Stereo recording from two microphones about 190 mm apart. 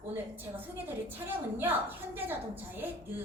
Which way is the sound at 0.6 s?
10° right (ahead or behind).